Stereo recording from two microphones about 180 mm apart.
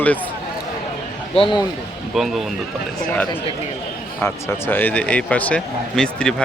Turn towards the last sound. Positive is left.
turn(degrees=5)  # may be behind; listen again after turning